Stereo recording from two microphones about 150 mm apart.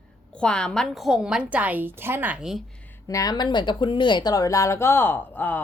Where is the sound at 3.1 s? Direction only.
25° left (ahead or behind).